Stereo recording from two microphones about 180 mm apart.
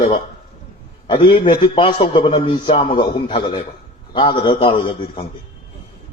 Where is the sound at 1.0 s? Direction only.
30° left (ahead or behind).